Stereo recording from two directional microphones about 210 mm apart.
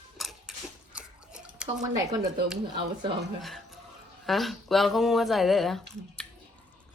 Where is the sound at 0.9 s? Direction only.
5° right (ahead or behind).